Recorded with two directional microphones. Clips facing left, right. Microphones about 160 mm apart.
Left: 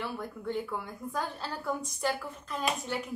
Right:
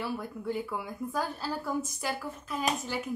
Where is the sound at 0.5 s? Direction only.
5° right (ahead or behind).